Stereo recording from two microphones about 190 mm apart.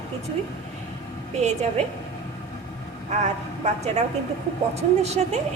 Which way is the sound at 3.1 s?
35° right (ahead or behind).